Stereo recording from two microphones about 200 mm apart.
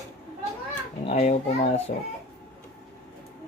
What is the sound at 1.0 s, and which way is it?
Speech, 35° left (ahead or behind).